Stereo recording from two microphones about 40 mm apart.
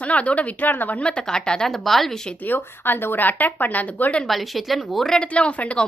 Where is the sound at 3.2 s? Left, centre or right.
Left.